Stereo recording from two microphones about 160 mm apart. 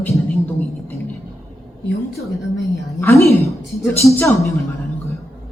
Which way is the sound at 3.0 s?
15° left (ahead or behind).